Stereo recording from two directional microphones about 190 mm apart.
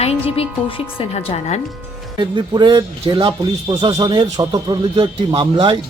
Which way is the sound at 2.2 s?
25° right (ahead or behind).